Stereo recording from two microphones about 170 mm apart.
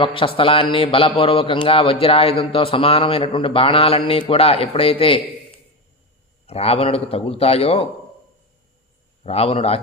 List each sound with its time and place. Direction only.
0.0 s a man's voice: 30° left (ahead or behind)
6.5 s a man's voice: 35° left (ahead or behind)
9.2 s a man's voice: 35° left (ahead or behind)